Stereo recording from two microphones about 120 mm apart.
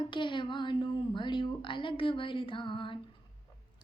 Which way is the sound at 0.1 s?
40° left (ahead or behind).